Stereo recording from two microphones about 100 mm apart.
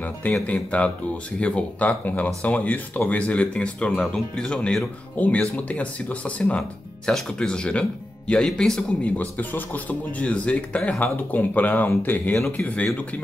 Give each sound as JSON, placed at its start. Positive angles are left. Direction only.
{"t": 0.0, "sound": "speech", "side_deg": 15}